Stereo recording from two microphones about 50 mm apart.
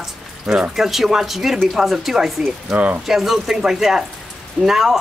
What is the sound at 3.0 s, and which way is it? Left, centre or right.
Speech, centre.